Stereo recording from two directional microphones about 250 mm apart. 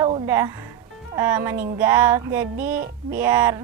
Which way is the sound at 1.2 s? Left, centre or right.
Centre.